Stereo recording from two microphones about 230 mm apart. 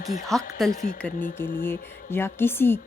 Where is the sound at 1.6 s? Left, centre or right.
Centre.